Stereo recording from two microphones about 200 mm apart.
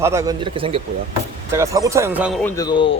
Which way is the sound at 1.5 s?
15° right (ahead or behind).